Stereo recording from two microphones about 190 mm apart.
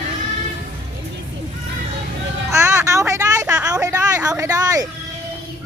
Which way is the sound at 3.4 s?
5° right (ahead or behind).